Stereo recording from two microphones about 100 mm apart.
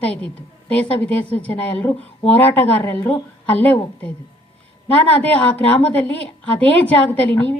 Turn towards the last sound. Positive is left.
turn(degrees=15)  # may be behind; listen again after turning